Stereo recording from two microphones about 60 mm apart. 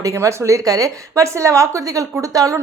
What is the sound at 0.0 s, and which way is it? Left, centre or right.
A woman's voice, right.